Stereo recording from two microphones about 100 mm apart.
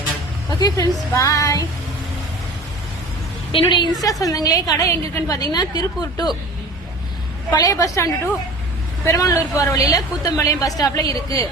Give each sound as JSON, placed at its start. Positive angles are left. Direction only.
{"t": 0.6, "sound": "a woman's voice", "side_deg": 35}
{"t": 3.5, "sound": "a woman's voice", "side_deg": 55}
{"t": 4.0, "sound": "a woman's voice", "side_deg": 35}
{"t": 7.5, "sound": "a woman's voice", "side_deg": 35}